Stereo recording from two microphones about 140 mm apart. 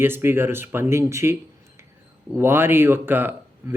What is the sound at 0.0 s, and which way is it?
Speech, 15° right (ahead or behind).